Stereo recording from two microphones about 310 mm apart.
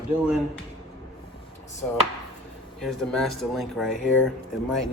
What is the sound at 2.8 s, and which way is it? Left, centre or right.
Speech, centre.